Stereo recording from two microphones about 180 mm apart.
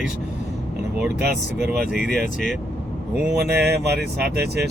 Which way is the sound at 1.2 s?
60° right (ahead or behind).